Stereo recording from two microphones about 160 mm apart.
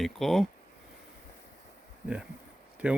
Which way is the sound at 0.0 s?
Centre (ahead or behind).